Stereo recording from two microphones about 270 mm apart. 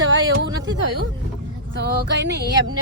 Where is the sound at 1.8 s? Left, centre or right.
Right.